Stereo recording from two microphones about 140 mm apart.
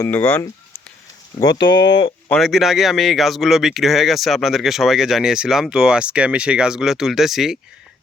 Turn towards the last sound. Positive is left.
turn(degrees=0)  # may be behind; listen again after turning